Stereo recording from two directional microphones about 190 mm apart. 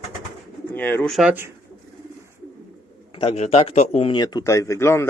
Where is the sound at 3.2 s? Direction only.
35° left (ahead or behind); by 5.0 s 15° left (ahead or behind).